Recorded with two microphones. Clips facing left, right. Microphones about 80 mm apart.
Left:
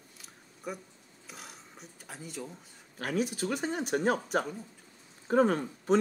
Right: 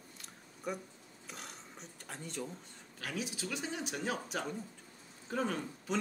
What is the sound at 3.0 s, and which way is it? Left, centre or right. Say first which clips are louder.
Speech: left 9 dB; left.